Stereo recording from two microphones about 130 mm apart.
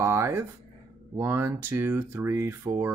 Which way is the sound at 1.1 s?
15° right (ahead or behind).